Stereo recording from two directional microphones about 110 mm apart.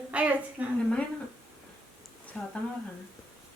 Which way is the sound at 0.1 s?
10° right (ahead or behind).